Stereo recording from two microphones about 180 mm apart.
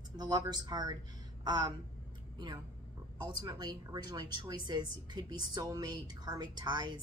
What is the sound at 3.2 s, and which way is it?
A woman's voice, 25° right (ahead or behind).